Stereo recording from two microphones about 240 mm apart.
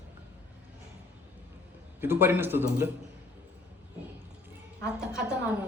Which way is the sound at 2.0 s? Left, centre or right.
Centre.